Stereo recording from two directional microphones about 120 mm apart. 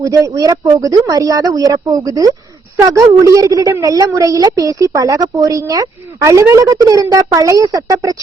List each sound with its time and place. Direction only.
0.0 s a woman's voice: 30° right (ahead or behind)